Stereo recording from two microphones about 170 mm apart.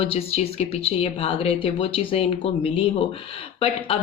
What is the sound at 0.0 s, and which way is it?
Speech, 35° left (ahead or behind).